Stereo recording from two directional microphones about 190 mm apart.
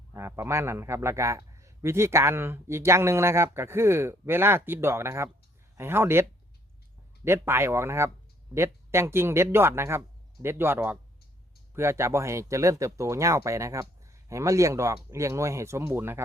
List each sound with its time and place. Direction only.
0.1 s a man's voice: 15° right (ahead or behind)
7.3 s a man's voice: 10° right (ahead or behind)